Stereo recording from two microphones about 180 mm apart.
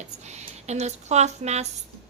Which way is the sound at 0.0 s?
40° right (ahead or behind).